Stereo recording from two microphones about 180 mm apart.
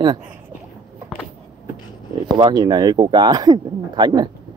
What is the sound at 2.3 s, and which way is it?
Speech, 20° right (ahead or behind).